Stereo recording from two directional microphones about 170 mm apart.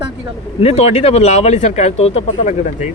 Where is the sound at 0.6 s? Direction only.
40° left (ahead or behind).